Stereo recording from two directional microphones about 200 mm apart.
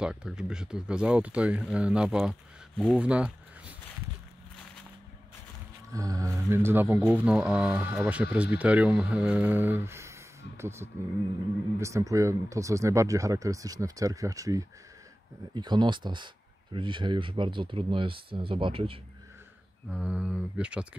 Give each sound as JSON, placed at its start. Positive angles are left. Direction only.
{"t": 0.0, "sound": "speech", "side_deg": -5}
{"t": 5.9, "sound": "speech", "side_deg": -15}
{"t": 19.9, "sound": "speech", "side_deg": -5}